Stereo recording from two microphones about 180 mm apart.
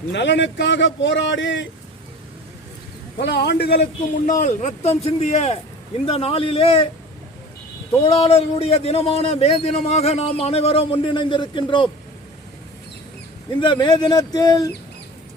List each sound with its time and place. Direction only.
0.1 s a man's voice: 75° left (ahead or behind)
3.2 s speech: 70° left (ahead or behind)
4.3 s a man's voice: 45° left (ahead or behind)
8.0 s a man's voice: 30° left (ahead or behind)
13.6 s speech: 25° left (ahead or behind)